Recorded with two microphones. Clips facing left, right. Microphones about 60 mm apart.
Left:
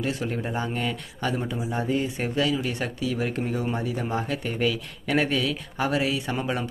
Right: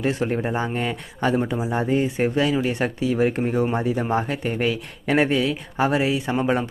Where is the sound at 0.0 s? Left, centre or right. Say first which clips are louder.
Right 5 dB; right.